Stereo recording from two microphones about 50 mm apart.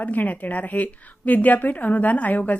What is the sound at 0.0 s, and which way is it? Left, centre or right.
A woman's voice, left.